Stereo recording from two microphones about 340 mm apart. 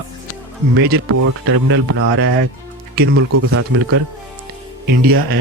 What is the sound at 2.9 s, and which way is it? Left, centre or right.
Speech, right.